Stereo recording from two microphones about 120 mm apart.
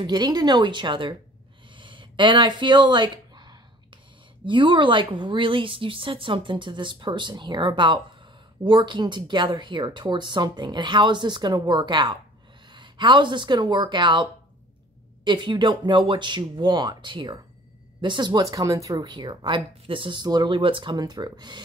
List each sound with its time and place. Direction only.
0.0 s speech: 35° right (ahead or behind)
1.7 s a sound: 45° right (ahead or behind)
4.5 s speech: 45° right (ahead or behind)
15.2 s speech: 40° right (ahead or behind)